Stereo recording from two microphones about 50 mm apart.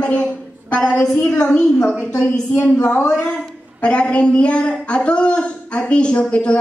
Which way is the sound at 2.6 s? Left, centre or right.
Left.